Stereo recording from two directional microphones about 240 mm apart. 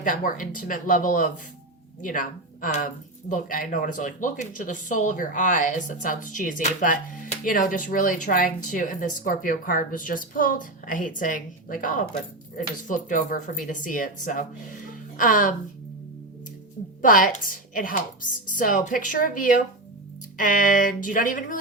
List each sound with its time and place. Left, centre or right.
0.0 s speech: left
17.0 s speech: left